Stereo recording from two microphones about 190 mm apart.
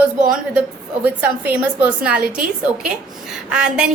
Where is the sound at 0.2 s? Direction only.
45° right (ahead or behind).